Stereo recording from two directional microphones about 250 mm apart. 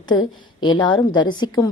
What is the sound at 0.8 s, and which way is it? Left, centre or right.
Speech, centre.